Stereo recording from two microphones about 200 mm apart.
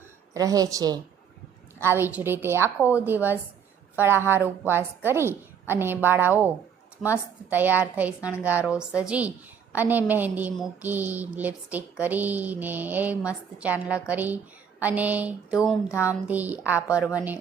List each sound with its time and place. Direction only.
0.3 s a woman's voice: 15° right (ahead or behind)
7.5 s a woman's voice: 10° right (ahead or behind)